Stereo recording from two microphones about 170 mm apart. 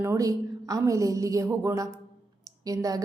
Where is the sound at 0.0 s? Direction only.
20° right (ahead or behind).